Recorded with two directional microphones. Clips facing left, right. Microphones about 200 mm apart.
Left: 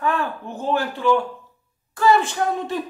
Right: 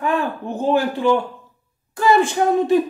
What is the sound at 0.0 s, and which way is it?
A man's voice, 15° right (ahead or behind).